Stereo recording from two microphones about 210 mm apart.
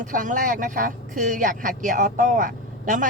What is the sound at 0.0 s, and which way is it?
Speech, 40° right (ahead or behind).